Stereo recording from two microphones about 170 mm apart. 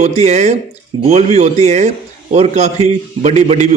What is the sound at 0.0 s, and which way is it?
A man's voice, 40° right (ahead or behind).